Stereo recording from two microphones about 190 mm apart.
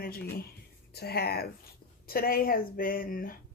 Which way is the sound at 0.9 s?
55° left (ahead or behind).